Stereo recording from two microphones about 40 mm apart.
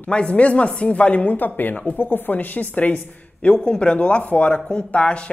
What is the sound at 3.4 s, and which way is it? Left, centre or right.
Speech, left.